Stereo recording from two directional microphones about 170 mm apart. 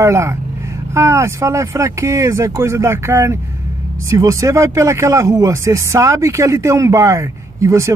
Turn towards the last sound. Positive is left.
turn(degrees=-15)  # may be behind; listen again after turning